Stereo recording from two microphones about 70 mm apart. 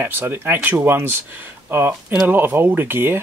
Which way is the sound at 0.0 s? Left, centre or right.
Right.